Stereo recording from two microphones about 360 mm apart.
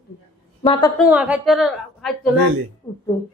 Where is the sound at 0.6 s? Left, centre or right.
Centre.